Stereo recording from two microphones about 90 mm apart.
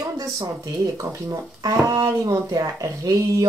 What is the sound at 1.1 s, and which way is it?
Speech, 35° right (ahead or behind).